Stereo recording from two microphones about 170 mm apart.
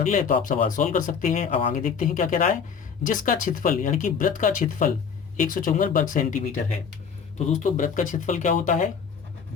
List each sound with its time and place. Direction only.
0.0 s speech: 50° left (ahead or behind)